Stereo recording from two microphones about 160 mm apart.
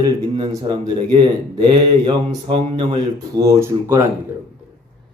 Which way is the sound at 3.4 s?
15° right (ahead or behind).